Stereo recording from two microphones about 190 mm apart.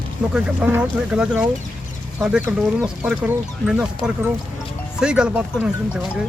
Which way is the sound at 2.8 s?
5° right (ahead or behind).